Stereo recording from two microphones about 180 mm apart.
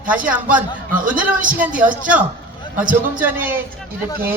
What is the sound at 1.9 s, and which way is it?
A man's voice, 5° right (ahead or behind).